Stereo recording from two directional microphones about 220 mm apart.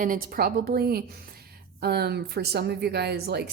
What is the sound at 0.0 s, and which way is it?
A woman's voice, 40° right (ahead or behind).